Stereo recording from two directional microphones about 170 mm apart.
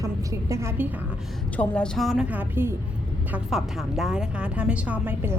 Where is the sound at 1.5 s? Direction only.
5° left (ahead or behind).